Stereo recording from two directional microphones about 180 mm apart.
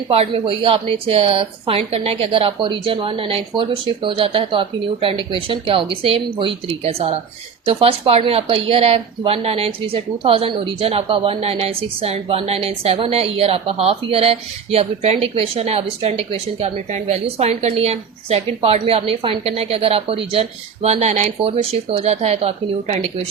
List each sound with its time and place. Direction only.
0.1 s a woman's voice: 35° right (ahead or behind)